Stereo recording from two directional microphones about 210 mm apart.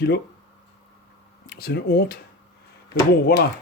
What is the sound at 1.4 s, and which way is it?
Speech, 50° left (ahead or behind).